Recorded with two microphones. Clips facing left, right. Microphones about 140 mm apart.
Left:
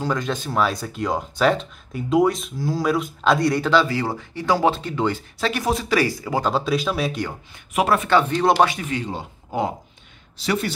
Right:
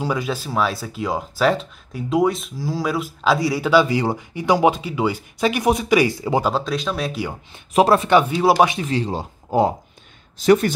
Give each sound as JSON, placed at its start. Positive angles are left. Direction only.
{"t": 0.0, "sound": "speech", "side_deg": -10}
{"t": 3.8, "sound": "speech", "side_deg": -20}
{"t": 6.4, "sound": "speech", "side_deg": 0}
{"t": 7.7, "sound": "speech", "side_deg": -30}
{"t": 8.1, "sound": "speech", "side_deg": -10}
{"t": 8.6, "sound": "speech", "side_deg": -25}
{"t": 10.4, "sound": "speech", "side_deg": -45}